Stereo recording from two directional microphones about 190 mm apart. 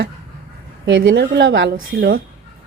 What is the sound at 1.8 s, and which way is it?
Speech, 55° right (ahead or behind).